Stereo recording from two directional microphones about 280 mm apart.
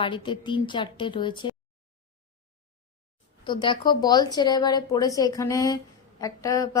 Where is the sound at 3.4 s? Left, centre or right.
Centre.